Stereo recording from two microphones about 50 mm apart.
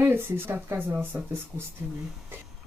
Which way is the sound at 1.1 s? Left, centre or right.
Right.